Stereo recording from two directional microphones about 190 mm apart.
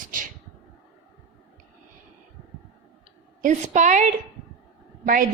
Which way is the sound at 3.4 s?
40° right (ahead or behind).